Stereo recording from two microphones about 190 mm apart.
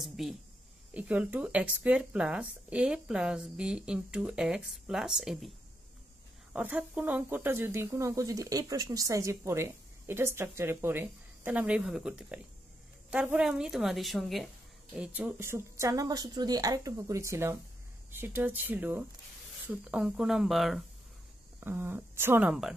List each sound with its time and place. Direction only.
0.0 s speech: centre (ahead or behind)
6.5 s speech: 10° right (ahead or behind)